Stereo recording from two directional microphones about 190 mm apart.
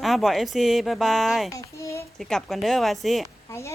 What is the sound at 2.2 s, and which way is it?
Speech, centre (ahead or behind).